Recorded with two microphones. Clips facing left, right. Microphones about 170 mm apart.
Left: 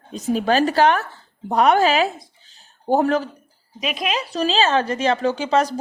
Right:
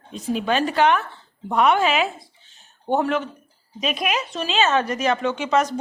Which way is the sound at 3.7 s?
20° left (ahead or behind).